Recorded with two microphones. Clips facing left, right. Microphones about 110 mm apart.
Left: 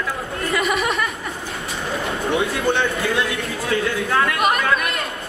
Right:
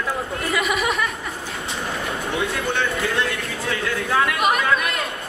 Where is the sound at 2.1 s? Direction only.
30° left (ahead or behind).